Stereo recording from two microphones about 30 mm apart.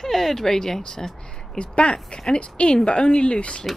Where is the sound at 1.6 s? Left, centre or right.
Left.